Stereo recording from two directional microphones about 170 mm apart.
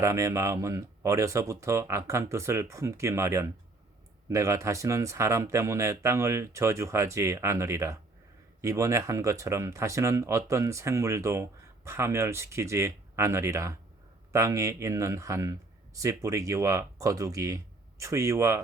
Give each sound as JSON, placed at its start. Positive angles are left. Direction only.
{"t": 0.0, "sound": "speech", "side_deg": -20}